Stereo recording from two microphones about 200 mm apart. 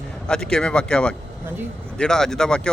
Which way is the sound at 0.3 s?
5° left (ahead or behind).